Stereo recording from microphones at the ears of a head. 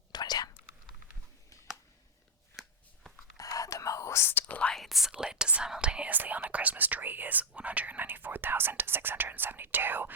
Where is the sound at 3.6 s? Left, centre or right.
Left.